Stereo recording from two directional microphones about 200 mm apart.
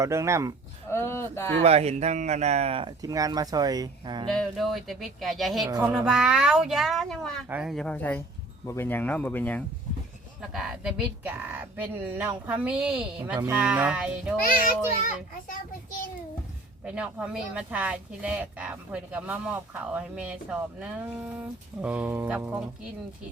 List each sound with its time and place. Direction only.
0.0 s speech: 15° right (ahead or behind)
0.9 s speech: 10° left (ahead or behind)
1.6 s speech: 30° right (ahead or behind)
4.3 s speech: centre (ahead or behind)
5.6 s speech: 20° right (ahead or behind)
5.9 s speech: 5° right (ahead or behind)
10.5 s speech: 5° right (ahead or behind)
16.8 s speech: 5° right (ahead or behind)